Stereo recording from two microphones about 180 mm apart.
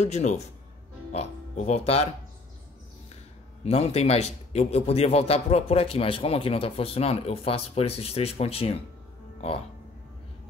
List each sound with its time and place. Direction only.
0.0 s a man's voice: 40° left (ahead or behind)
3.6 s a man's voice: 35° left (ahead or behind)